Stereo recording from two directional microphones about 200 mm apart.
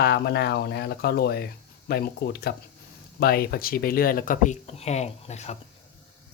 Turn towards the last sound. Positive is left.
turn(degrees=35)  # may be behind; listen again after turning